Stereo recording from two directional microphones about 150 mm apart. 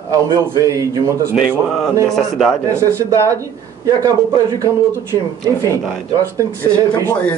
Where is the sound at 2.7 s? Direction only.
20° right (ahead or behind).